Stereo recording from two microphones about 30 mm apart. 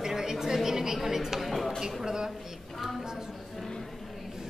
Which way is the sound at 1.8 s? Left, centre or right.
Right.